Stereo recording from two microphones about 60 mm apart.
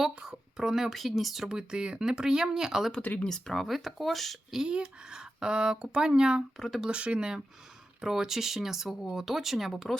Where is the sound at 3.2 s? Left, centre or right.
Centre.